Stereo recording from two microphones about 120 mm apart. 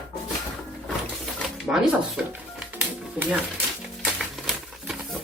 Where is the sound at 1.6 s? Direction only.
Centre (ahead or behind).